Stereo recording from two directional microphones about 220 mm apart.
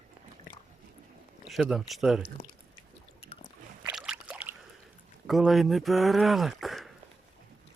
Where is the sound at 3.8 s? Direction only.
5° right (ahead or behind).